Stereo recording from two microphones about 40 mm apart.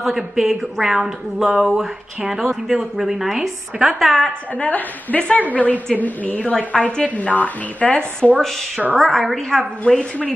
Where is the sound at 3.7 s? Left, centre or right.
Right.